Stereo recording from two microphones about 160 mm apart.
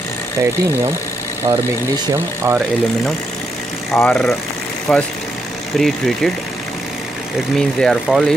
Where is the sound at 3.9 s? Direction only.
15° left (ahead or behind).